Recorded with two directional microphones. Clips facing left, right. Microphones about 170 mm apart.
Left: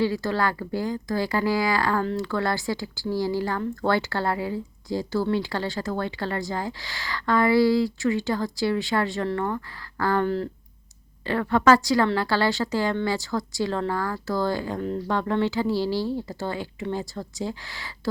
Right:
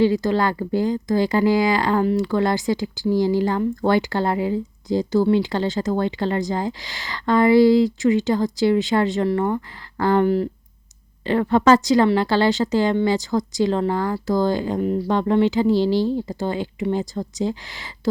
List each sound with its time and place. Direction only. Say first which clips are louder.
0.0 s speech: right 6 dB; 20° right (ahead or behind)